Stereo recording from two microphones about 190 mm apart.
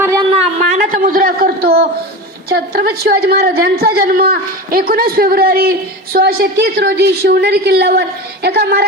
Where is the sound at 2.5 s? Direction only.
55° right (ahead or behind).